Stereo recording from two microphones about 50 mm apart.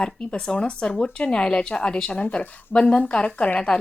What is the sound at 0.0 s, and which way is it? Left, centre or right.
A woman's voice, centre.